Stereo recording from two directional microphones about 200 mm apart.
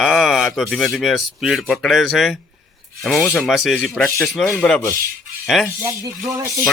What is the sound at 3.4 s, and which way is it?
Speech, centre (ahead or behind).